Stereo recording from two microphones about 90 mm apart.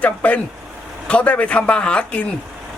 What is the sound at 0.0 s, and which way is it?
A man's voice, 15° left (ahead or behind).